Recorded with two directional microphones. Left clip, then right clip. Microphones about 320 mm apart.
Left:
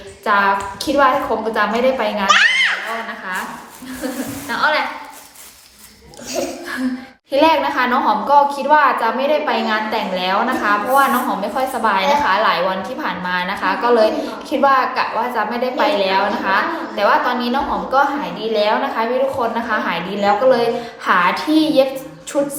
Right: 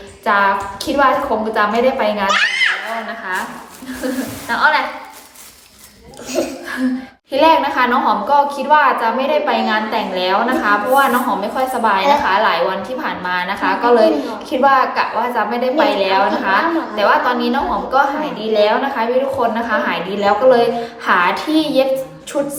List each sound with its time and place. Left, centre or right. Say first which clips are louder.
0.3 s a woman's voice: right 1 dB; centre
2.2 s a child's voice: left 4 dB; left
4.0 s a woman's voice: right 3 dB; centre
7.3 s a woman's voice: right 2 dB; centre